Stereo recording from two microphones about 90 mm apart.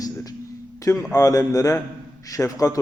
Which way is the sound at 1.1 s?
40° left (ahead or behind).